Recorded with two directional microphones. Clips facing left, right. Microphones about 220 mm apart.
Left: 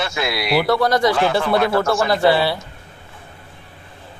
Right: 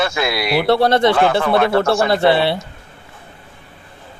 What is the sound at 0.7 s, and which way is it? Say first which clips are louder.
Speech: right 5 dB; 30° right (ahead or behind).